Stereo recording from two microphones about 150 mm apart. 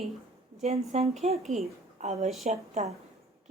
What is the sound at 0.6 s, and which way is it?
A woman's voice, 45° right (ahead or behind).